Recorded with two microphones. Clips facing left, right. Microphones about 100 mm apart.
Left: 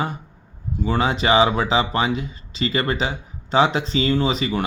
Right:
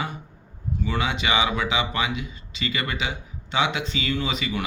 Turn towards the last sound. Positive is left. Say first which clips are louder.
# left 6 dB
turn(degrees=35)  # may be behind; listen again after turning